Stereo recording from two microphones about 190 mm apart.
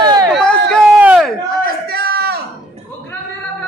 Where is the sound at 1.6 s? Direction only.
55° right (ahead or behind).